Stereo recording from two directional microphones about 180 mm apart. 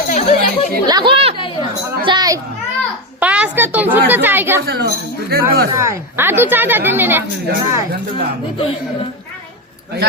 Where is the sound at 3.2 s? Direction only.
10° right (ahead or behind).